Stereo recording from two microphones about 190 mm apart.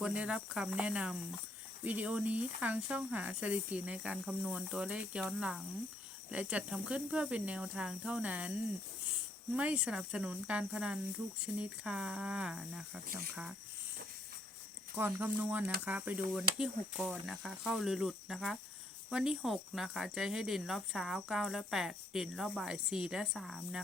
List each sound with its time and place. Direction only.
0.0 s speech: 5° right (ahead or behind)
9.6 s speech: 5° right (ahead or behind)
14.9 s speech: 10° right (ahead or behind)